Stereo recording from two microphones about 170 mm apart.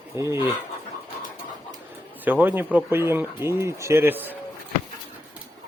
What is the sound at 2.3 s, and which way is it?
A man's voice, 10° right (ahead or behind).